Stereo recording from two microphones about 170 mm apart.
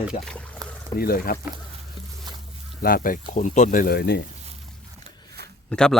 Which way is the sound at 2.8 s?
55° left (ahead or behind).